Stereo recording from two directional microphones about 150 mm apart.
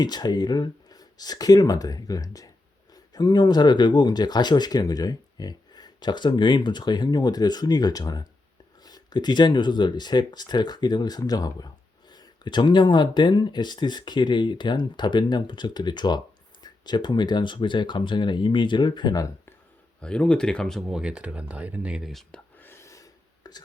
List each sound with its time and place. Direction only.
0.0 s speech: 25° left (ahead or behind)
20.0 s speech: 5° left (ahead or behind)
22.5 s a sound: 15° left (ahead or behind)